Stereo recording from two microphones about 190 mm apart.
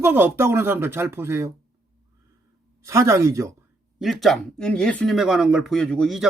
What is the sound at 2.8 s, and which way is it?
Speech, 15° right (ahead or behind).